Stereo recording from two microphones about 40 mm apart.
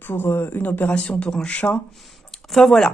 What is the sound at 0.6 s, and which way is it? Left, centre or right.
Speech, left.